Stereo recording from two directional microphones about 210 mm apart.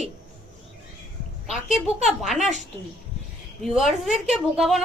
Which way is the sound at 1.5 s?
Centre (ahead or behind).